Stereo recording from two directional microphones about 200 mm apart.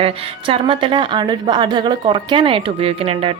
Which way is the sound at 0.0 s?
25° right (ahead or behind).